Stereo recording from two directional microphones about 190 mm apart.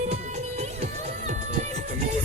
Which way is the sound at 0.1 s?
35° right (ahead or behind).